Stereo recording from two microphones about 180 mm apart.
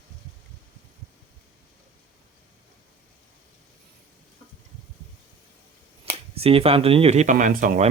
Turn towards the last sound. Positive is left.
turn(degrees=-45)  # may be behind; listen again after turning